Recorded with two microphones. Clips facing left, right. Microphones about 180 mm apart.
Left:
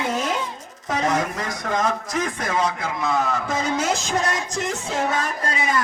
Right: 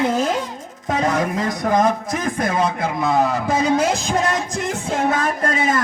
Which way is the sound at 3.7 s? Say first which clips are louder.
Right 5 dB; 55° right (ahead or behind).